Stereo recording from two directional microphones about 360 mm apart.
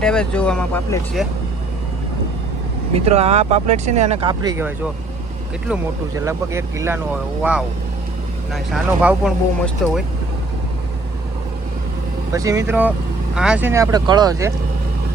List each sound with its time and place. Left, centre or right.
0.0 s speech: centre
2.9 s speech: centre
8.5 s speech: centre
12.3 s speech: centre